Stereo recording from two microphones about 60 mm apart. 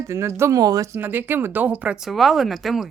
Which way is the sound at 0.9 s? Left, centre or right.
Right.